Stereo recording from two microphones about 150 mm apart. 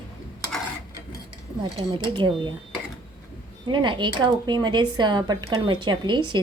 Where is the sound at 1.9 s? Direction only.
35° right (ahead or behind).